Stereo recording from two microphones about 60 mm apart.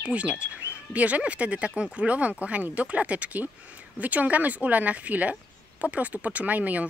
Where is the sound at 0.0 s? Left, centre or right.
Right.